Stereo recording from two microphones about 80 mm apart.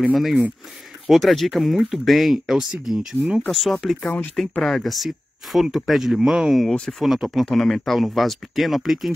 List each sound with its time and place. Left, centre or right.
0.1 s speech: centre
3.4 s speech: centre
4.0 s speech: left
4.4 s speech: centre